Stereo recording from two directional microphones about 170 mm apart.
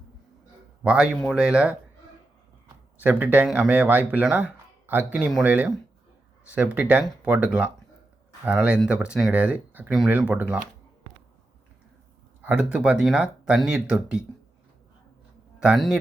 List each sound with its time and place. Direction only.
0.9 s speech: 5° right (ahead or behind)
3.0 s speech: 10° right (ahead or behind)
6.7 s speech: 10° right (ahead or behind)
12.4 s a sound: 5° right (ahead or behind)
12.7 s speech: 5° right (ahead or behind)
15.6 s speech: centre (ahead or behind)